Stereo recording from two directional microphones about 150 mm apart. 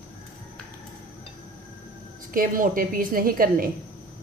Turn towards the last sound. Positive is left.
turn(degrees=-70)  # may be behind; listen again after turning